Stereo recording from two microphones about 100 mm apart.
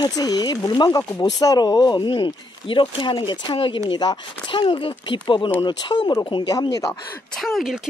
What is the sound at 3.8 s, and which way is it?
Speech, 45° left (ahead or behind).